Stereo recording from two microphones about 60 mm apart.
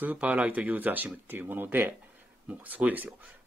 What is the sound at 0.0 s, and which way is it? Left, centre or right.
Speech, right.